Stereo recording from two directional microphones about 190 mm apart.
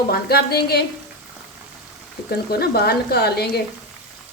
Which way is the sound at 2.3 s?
55° left (ahead or behind).